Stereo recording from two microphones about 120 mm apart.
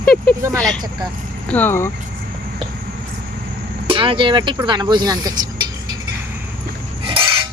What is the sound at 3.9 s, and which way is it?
Speech, 45° right (ahead or behind).